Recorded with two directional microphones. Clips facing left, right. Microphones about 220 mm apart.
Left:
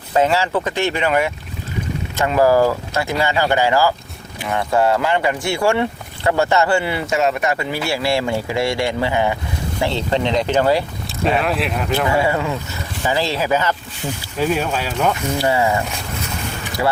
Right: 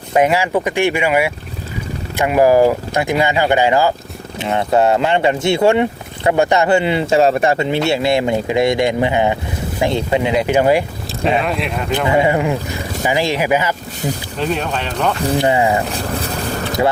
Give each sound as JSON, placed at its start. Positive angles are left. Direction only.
{"t": 0.1, "sound": "speech", "side_deg": -15}
{"t": 11.2, "sound": "speech", "side_deg": 0}
{"t": 12.0, "sound": "speech", "side_deg": -20}
{"t": 14.3, "sound": "speech", "side_deg": 5}
{"t": 15.4, "sound": "speech", "side_deg": -15}
{"t": 15.7, "sound": "boat", "side_deg": -35}